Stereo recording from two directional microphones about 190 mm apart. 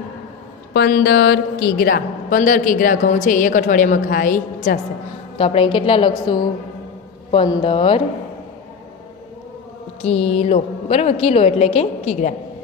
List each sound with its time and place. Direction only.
0.7 s a woman's voice: 55° left (ahead or behind)
5.4 s a woman's voice: 30° left (ahead or behind)
10.0 s a woman's voice: 35° left (ahead or behind)